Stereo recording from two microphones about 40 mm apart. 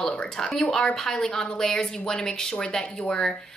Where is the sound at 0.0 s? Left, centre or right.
Centre.